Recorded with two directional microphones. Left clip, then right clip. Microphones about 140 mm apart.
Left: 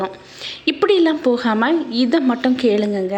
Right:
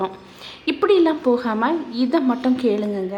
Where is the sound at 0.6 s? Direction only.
15° left (ahead or behind).